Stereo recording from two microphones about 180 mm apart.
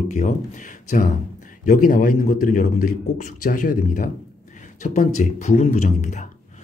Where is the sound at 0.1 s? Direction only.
45° left (ahead or behind).